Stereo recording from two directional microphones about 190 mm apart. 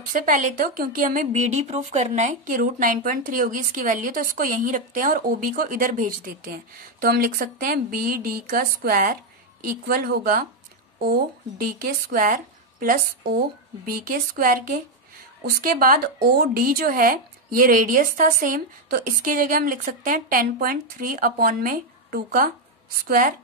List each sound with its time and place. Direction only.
0.1 s speech: 45° right (ahead or behind)